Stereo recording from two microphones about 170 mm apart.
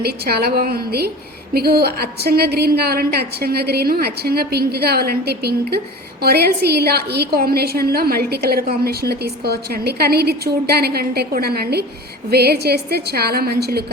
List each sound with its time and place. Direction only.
0.0 s a woman's voice: 70° right (ahead or behind)